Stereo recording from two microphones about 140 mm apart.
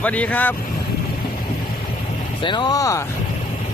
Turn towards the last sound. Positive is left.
turn(degrees=25)  # may be behind; listen again after turning